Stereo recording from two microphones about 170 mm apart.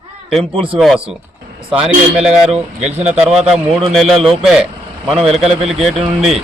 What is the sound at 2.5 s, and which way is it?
Speech, 40° right (ahead or behind).